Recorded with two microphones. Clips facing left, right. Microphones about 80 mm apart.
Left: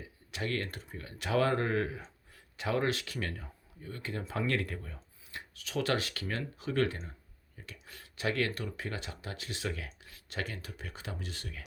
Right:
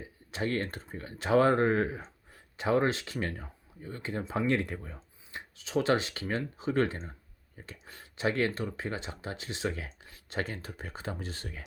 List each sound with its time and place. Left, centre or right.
0.0 s speech: right